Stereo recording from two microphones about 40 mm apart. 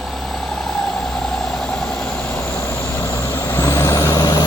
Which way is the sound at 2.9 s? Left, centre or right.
Left.